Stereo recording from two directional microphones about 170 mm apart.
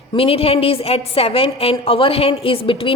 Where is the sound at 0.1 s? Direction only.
35° left (ahead or behind).